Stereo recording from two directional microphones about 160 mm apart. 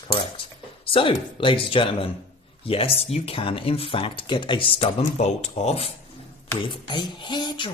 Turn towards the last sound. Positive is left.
turn(degrees=30)  # may be behind; listen again after turning